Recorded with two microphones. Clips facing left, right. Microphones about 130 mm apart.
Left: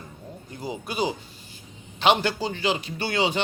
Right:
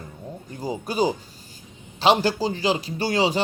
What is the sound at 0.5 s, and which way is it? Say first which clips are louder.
A man's voice: right 4 dB; 40° right (ahead or behind).